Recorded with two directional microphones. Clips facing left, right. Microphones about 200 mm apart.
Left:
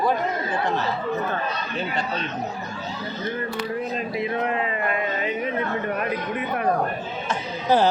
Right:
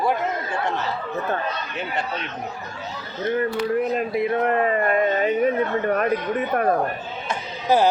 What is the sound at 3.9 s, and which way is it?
Speech, 55° right (ahead or behind).